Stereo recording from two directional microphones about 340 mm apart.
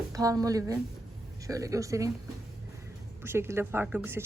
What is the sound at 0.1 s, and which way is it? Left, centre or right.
Speech, centre.